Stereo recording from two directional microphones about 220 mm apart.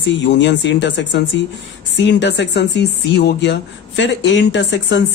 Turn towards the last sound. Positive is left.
turn(degrees=55)  # may be behind; listen again after turning